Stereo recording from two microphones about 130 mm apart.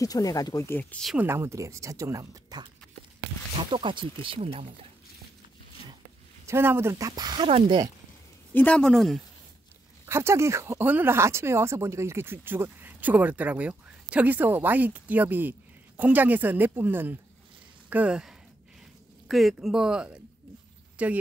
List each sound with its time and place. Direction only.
0.0 s speech: 25° left (ahead or behind)
1.1 s speech: 20° right (ahead or behind)
3.5 s speech: 40° right (ahead or behind)
6.4 s speech: 20° right (ahead or behind)
7.4 s speech: 45° right (ahead or behind)
8.5 s speech: 10° left (ahead or behind)
10.0 s speech: 20° right (ahead or behind)